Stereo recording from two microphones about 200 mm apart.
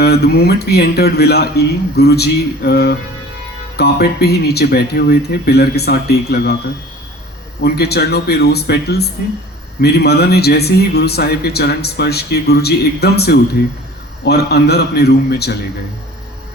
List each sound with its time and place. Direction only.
0.0 s speech: 55° left (ahead or behind)
7.6 s speech: 55° left (ahead or behind)